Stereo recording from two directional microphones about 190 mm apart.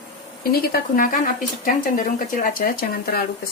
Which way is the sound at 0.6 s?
50° left (ahead or behind).